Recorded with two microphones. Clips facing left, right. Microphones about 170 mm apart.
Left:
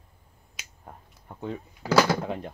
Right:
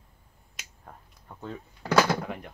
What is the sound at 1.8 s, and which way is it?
Speech, 5° left (ahead or behind).